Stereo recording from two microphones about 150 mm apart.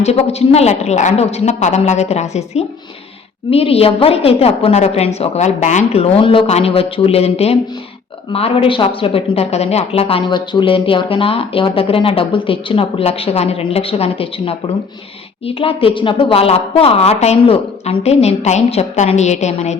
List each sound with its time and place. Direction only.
0.0 s a woman's voice: 45° left (ahead or behind)